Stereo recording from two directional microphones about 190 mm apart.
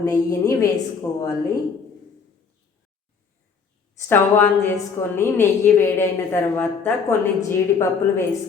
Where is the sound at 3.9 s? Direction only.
10° left (ahead or behind).